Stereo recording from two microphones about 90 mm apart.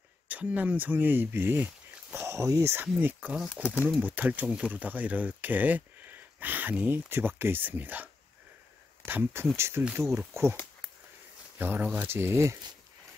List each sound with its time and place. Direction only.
0.3 s speech: 15° right (ahead or behind)
11.5 s speech: 20° right (ahead or behind)